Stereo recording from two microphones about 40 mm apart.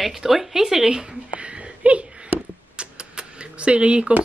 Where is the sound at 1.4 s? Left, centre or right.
Right.